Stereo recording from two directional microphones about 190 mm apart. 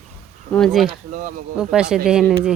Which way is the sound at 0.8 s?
40° right (ahead or behind).